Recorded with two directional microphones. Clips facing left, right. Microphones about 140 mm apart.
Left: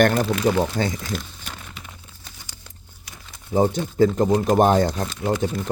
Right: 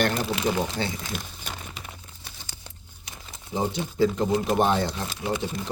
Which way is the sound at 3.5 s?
45° left (ahead or behind).